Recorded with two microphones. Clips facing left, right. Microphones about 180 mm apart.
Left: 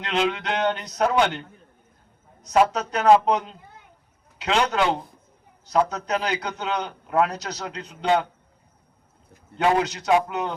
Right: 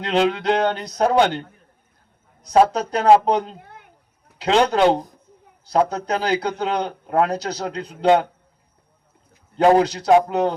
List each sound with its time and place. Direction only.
0.0 s a man's voice: 35° right (ahead or behind)
3.6 s a sound: 65° right (ahead or behind)
4.4 s a man's voice: 35° right (ahead or behind)
9.6 s a man's voice: 40° right (ahead or behind)